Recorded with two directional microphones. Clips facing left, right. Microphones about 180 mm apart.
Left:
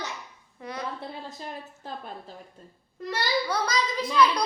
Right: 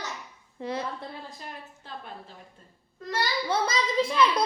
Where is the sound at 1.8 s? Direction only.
40° left (ahead or behind).